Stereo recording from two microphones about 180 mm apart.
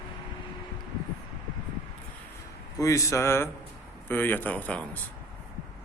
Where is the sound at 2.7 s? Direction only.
15° left (ahead or behind).